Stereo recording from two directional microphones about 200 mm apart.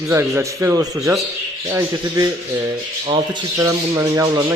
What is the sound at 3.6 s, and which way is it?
Speech, 15° right (ahead or behind).